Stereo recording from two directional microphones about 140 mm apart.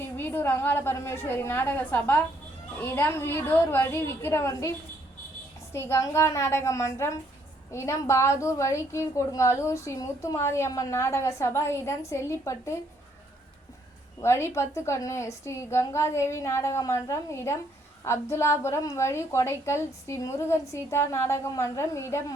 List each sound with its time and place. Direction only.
0.0 s a woman's voice: 15° left (ahead or behind)
5.7 s a woman's voice: 20° left (ahead or behind)
14.2 s a woman's voice: 20° left (ahead or behind)